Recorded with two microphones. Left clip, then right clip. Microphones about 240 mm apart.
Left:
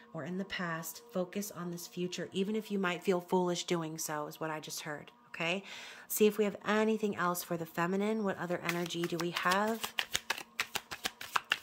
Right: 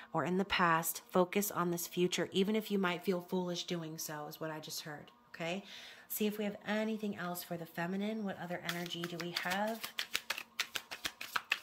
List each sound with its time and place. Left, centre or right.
0.1 s a woman's voice: centre; by 10.7 s left